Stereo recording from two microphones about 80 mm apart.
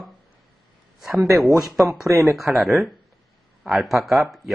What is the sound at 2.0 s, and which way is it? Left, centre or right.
Speech, right.